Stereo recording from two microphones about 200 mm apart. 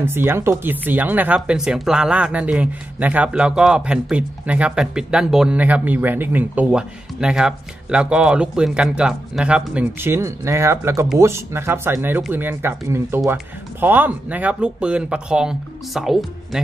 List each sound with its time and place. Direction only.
0.0 s speech: 10° right (ahead or behind)